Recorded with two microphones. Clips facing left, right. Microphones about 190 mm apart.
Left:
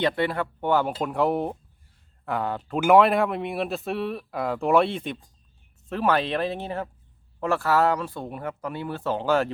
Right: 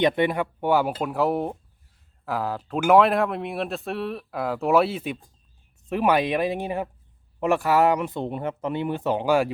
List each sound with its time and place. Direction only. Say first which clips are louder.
0.0 s speech: right 3 dB; 15° right (ahead or behind)